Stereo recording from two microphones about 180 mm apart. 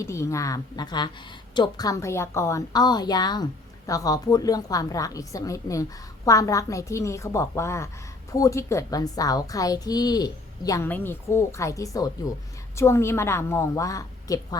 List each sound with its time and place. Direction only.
0.0 s a woman's voice: 15° left (ahead or behind)